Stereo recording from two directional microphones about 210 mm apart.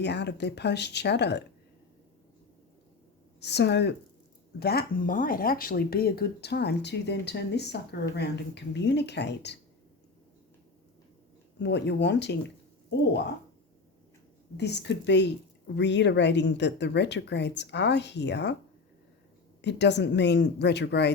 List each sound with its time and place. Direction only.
0.0 s speech: 55° left (ahead or behind)
3.4 s speech: 55° left (ahead or behind)
11.6 s speech: 55° left (ahead or behind)
14.5 s speech: 55° left (ahead or behind)
19.6 s speech: 55° left (ahead or behind)